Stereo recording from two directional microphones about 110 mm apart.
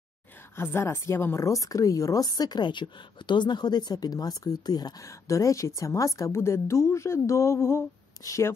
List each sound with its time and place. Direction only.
0.6 s speech: 20° left (ahead or behind)